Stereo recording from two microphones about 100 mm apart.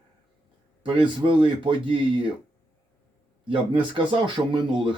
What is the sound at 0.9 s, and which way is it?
Speech, 60° right (ahead or behind).